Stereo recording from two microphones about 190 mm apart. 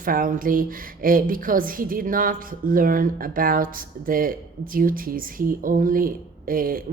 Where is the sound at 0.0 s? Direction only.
45° right (ahead or behind).